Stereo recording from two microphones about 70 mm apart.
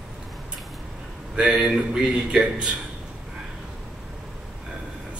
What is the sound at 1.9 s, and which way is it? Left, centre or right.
Speech, centre.